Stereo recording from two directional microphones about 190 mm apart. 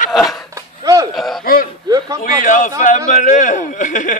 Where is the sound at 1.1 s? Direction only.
Centre (ahead or behind).